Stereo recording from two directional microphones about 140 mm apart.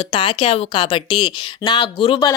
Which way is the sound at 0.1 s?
40° left (ahead or behind).